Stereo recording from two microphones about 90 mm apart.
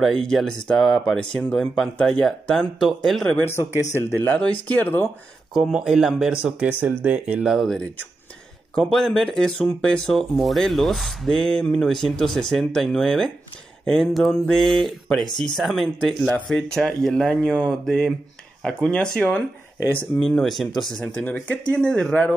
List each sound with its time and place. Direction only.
0.0 s speech: 5° left (ahead or behind)
3.3 s speech: 30° left (ahead or behind)
4.2 s speech: 15° left (ahead or behind)
5.6 s speech: 5° right (ahead or behind)
6.3 s speech: 15° right (ahead or behind)
7.5 s speech: centre (ahead or behind)
21.0 s speech: 20° left (ahead or behind)